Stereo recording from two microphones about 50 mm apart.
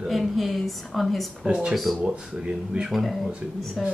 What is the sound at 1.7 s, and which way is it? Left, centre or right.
Speech, centre.